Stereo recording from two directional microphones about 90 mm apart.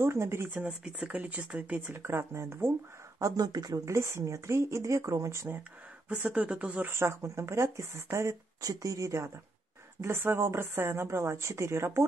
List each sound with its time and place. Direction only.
0.0 s speech: 30° right (ahead or behind)
0.6 s speech: 10° right (ahead or behind)
2.0 s speech: 30° right (ahead or behind)
3.2 s speech: 40° right (ahead or behind)
6.0 s speech: 15° right (ahead or behind); by 9.3 s 35° right (ahead or behind)
10.0 s speech: 25° right (ahead or behind)